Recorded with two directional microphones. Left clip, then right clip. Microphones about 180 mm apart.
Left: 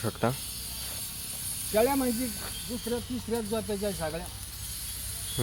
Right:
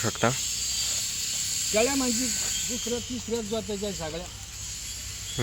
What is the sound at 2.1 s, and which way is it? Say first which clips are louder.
Speech: right 5 dB; 55° left (ahead or behind).